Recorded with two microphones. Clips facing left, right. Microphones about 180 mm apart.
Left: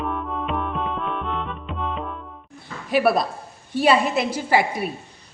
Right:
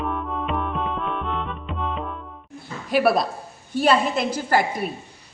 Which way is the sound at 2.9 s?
Centre (ahead or behind).